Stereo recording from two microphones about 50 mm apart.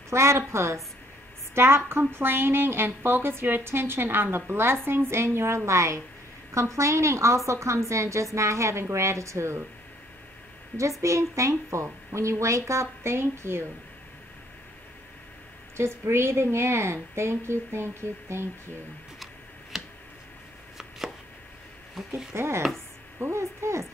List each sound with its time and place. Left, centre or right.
0.1 s a woman's voice: right
1.5 s a woman's voice: right
5.7 s a woman's voice: right
10.8 s a woman's voice: right
13.0 s a woman's voice: right
15.7 s a woman's voice: right
19.7 s tick: centre
22.1 s a woman's voice: right
23.3 s a woman's voice: right